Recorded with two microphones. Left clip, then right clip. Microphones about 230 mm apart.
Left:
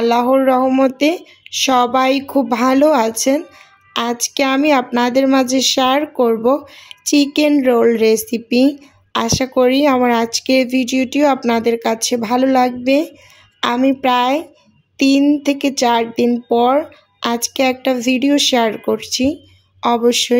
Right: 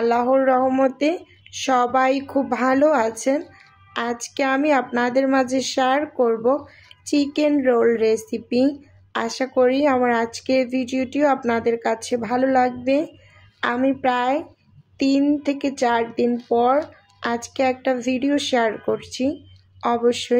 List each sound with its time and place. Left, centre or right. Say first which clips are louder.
0.0 s speech: left 5 dB; left